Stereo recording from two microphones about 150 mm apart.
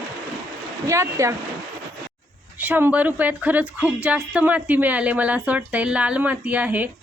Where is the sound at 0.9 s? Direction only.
20° right (ahead or behind).